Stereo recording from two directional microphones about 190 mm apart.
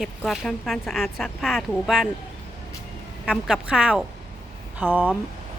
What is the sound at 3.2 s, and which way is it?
Speech, 5° right (ahead or behind).